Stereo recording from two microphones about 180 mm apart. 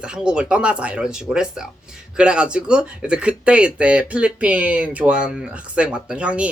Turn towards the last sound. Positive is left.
turn(degrees=-5)  # may be behind; listen again after turning